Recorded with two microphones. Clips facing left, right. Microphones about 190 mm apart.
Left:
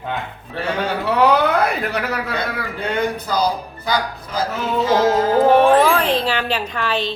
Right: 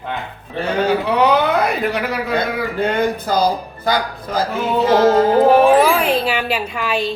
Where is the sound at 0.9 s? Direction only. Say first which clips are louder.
Left 3 dB; 5° left (ahead or behind).